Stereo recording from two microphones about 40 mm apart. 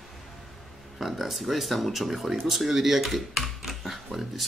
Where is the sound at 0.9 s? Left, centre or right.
Centre.